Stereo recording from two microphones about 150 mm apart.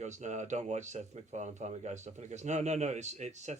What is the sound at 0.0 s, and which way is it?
Speech, 55° right (ahead or behind).